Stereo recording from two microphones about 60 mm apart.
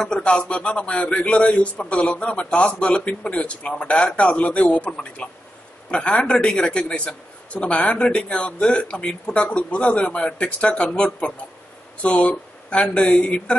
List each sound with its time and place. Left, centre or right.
0.0 s a man's voice: centre